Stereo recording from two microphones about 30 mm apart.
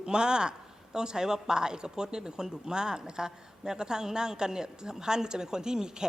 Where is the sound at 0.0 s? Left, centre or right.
Right.